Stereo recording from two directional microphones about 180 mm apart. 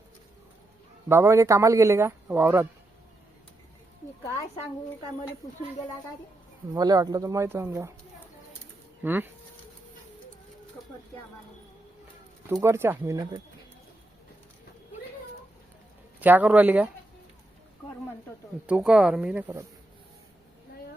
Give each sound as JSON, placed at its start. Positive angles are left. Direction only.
{"t": 1.0, "sound": "speech", "side_deg": -15}
{"t": 6.7, "sound": "speech", "side_deg": -20}
{"t": 9.0, "sound": "speech", "side_deg": -10}
{"t": 12.5, "sound": "speech", "side_deg": -15}
{"t": 16.2, "sound": "speech", "side_deg": -10}
{"t": 18.6, "sound": "speech", "side_deg": -5}